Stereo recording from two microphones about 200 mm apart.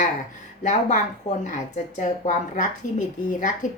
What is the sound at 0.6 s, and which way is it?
Speech, 35° left (ahead or behind).